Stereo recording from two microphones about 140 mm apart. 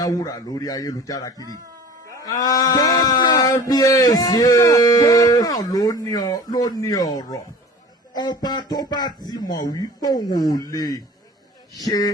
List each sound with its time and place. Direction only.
0.0 s speech: 25° left (ahead or behind)
2.4 s male singing: 25° left (ahead or behind)
3.7 s speech: 25° left (ahead or behind)